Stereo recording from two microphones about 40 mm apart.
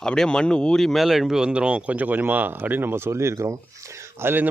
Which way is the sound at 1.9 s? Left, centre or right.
Right.